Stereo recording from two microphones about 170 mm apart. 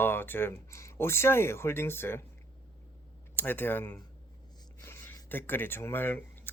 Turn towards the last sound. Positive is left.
turn(degrees=10)  # may be behind; listen again after turning